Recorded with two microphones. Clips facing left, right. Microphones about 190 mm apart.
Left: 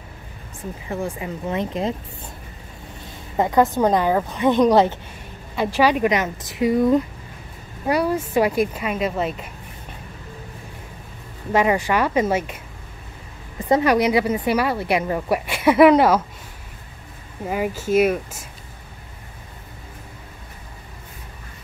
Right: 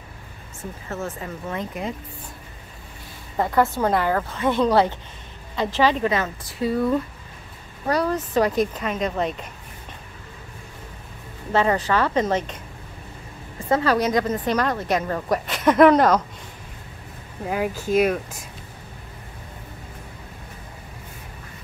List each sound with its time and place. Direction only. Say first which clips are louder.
0.8 s a woman's voice: left 4 dB; 15° left (ahead or behind)
3.3 s a woman's voice: left 3 dB; 20° left (ahead or behind)
11.5 s a woman's voice: left 2 dB; 10° left (ahead or behind)
13.7 s a woman's voice: left 3 dB; 15° left (ahead or behind)
17.5 s speech: left 1 dB; 5° left (ahead or behind)